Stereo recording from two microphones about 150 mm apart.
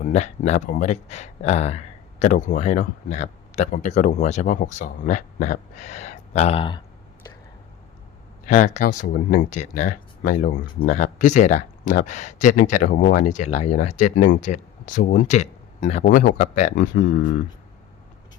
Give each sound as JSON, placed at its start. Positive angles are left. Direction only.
{"t": 0.0, "sound": "speech", "side_deg": 50}
{"t": 8.5, "sound": "speech", "side_deg": 55}
{"t": 12.9, "sound": "speech", "side_deg": 80}